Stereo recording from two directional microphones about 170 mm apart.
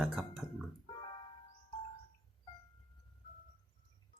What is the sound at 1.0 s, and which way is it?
Music, 30° left (ahead or behind).